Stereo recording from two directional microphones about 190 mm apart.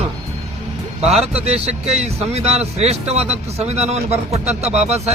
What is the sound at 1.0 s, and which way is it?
Speech, centre (ahead or behind).